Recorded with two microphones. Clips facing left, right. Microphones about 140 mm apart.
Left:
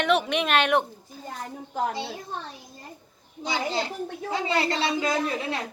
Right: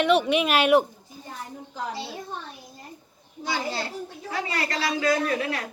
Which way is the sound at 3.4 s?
20° left (ahead or behind).